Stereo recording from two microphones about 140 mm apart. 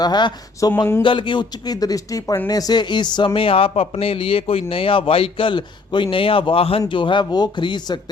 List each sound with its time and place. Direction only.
0.0 s speech: 30° left (ahead or behind)